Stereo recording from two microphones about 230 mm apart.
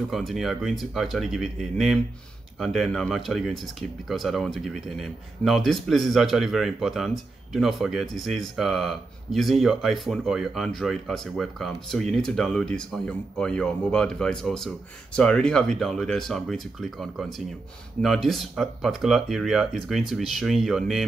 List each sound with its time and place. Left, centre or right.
0.1 s speech: centre